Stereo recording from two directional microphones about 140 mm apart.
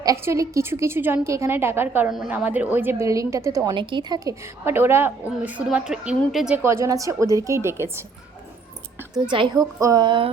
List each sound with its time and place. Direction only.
0.0 s a woman's voice: 20° right (ahead or behind)
2.0 s a woman's voice: 5° right (ahead or behind); by 3.8 s 20° right (ahead or behind)
3.8 s a woman's voice: 35° right (ahead or behind); by 6.6 s 5° right (ahead or behind)
6.6 s a woman's voice: 20° right (ahead or behind)
9.3 s music: 35° right (ahead or behind)